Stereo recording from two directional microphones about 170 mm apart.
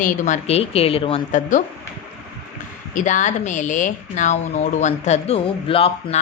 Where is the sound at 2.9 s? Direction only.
45° left (ahead or behind).